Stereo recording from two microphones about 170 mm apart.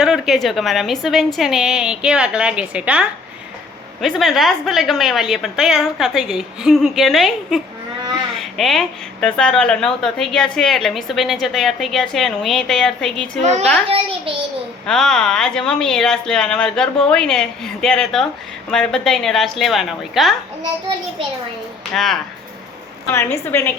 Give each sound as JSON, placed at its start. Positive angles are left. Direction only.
{"t": 0.0, "sound": "a woman's voice", "side_deg": 0}
{"t": 13.4, "sound": "a child's voice", "side_deg": -45}
{"t": 14.8, "sound": "a woman's voice", "side_deg": 5}
{"t": 21.9, "sound": "a woman's voice", "side_deg": 0}
{"t": 23.1, "sound": "a woman's voice", "side_deg": 15}